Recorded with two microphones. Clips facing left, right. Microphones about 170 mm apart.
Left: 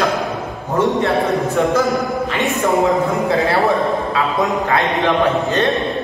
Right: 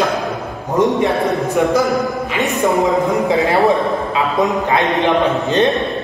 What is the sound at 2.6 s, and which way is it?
Speech, 15° right (ahead or behind).